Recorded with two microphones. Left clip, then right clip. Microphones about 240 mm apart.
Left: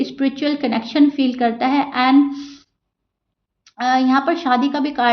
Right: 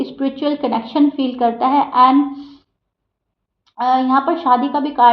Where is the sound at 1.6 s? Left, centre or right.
Left.